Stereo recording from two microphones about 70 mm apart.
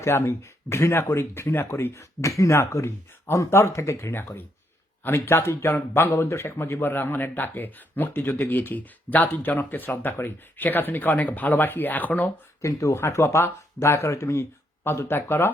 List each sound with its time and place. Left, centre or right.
0.0 s speech: left
1.9 s speech: left
12.6 s speech: left